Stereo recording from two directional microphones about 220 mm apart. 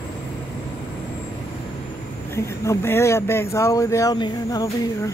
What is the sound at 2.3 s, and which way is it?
Speech, 10° left (ahead or behind).